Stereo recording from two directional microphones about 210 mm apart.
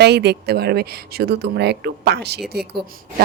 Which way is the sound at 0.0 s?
50° right (ahead or behind).